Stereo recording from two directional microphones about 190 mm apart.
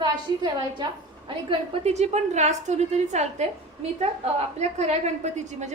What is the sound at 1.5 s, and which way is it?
A woman's voice, 35° right (ahead or behind).